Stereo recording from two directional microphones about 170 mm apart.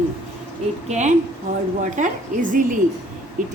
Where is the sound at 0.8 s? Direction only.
45° right (ahead or behind).